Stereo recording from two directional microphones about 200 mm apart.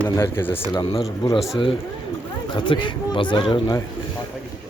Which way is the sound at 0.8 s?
25° left (ahead or behind).